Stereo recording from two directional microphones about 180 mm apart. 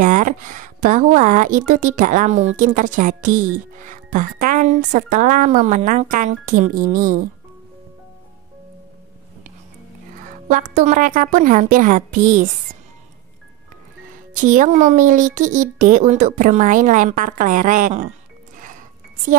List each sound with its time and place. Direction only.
0.0 s speech: 45° right (ahead or behind)
10.5 s speech: 45° right (ahead or behind)
14.1 s speech: 45° right (ahead or behind)
18.6 s music: 45° right (ahead or behind)